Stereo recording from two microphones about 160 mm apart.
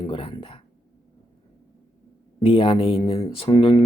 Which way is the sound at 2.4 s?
35° left (ahead or behind).